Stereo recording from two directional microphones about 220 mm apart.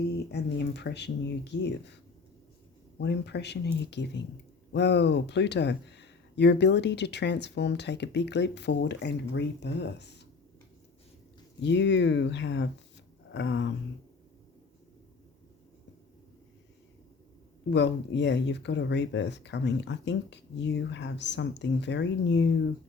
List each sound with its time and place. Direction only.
0.2 s speech: 50° left (ahead or behind)
3.0 s speech: 50° left (ahead or behind)
11.6 s speech: 55° left (ahead or behind)
13.3 s a sound: 55° left (ahead or behind)
17.7 s speech: 50° left (ahead or behind)